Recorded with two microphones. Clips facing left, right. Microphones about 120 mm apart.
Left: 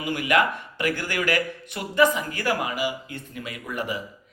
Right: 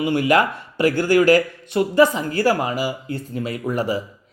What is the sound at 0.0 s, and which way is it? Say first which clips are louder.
Speech: right 5 dB; 30° right (ahead or behind).